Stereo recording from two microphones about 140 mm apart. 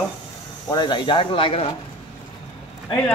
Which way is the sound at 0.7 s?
30° left (ahead or behind).